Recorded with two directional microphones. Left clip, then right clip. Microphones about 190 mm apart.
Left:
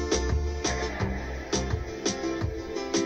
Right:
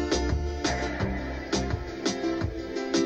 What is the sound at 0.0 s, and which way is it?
Music, 30° right (ahead or behind).